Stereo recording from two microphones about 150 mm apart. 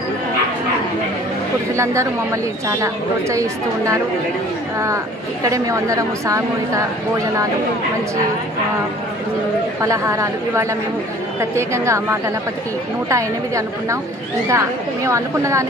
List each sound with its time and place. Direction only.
2.8 s a woman's voice: 20° right (ahead or behind)
9.8 s a woman's voice: 20° right (ahead or behind)